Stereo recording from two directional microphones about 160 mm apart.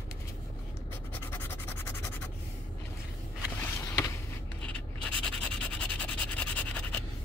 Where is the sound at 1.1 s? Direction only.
15° left (ahead or behind).